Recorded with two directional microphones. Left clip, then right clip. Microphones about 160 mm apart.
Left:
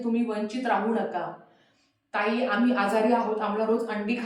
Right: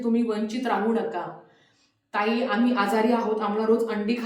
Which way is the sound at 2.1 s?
20° right (ahead or behind).